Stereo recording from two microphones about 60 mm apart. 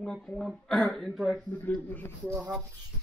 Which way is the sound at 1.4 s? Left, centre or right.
Left.